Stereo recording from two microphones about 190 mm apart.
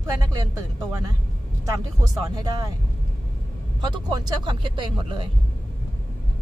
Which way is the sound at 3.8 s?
20° right (ahead or behind).